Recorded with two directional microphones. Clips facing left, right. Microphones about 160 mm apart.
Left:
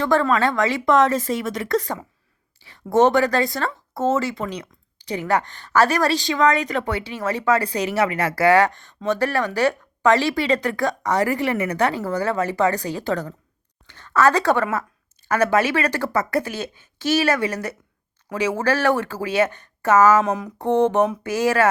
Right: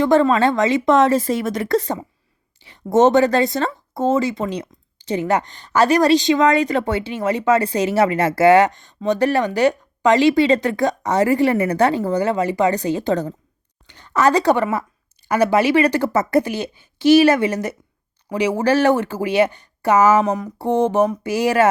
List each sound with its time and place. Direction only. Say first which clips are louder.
0.0 s a woman's voice: right 4 dB; 25° right (ahead or behind)
20.3 s a sound: right 2 dB; centre (ahead or behind)
20.7 s speech: right 1 dB; 10° right (ahead or behind)